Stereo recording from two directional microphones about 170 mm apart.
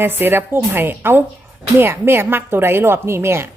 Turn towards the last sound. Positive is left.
turn(degrees=-15)  # may be behind; listen again after turning